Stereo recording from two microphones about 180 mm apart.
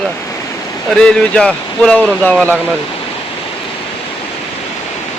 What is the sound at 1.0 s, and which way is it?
Speech, 5° left (ahead or behind).